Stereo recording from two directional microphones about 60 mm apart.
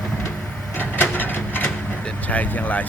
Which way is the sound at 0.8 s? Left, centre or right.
Left.